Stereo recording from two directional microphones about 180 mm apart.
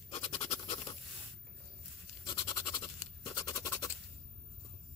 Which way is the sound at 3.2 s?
15° left (ahead or behind).